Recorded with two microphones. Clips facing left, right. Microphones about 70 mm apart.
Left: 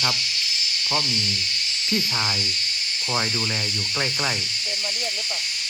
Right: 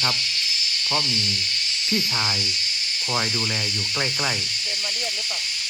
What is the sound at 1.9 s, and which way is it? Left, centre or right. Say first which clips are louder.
Speech: even; centre.